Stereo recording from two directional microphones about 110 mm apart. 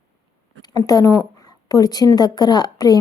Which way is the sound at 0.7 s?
35° left (ahead or behind).